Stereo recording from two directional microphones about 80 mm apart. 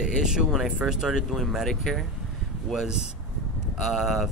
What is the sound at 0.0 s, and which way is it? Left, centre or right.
Speech, centre.